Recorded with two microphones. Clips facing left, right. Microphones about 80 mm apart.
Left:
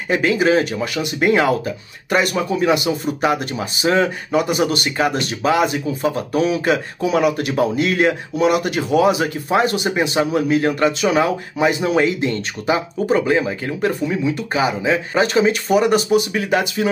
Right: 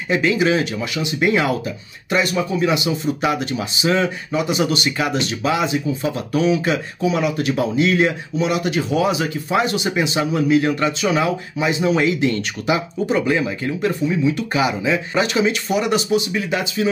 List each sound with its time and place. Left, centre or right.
0.1 s speech: left
2.0 s speech: left
3.2 s speech: left
12.0 s speech: left